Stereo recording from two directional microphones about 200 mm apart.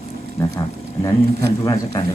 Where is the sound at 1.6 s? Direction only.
15° left (ahead or behind).